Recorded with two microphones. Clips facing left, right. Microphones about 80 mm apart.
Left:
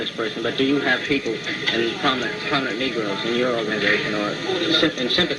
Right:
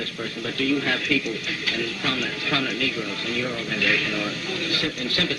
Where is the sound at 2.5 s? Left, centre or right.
Left.